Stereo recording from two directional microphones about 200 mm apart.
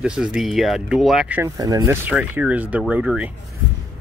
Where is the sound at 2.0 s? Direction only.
5° right (ahead or behind).